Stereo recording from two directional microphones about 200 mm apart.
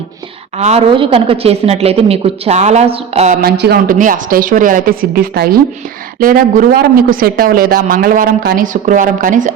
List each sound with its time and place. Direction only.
0.6 s speech: 30° right (ahead or behind)
3.4 s speech: 50° right (ahead or behind)